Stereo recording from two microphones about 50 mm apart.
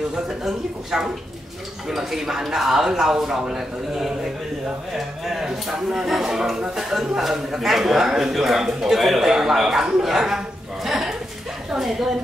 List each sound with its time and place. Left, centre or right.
0.1 s speech: centre
10.9 s a sound: centre
11.7 s a woman's voice: centre